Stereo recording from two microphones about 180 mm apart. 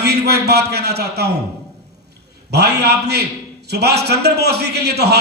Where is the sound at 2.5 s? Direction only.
65° right (ahead or behind).